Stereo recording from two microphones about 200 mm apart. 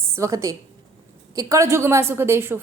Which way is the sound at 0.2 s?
15° right (ahead or behind).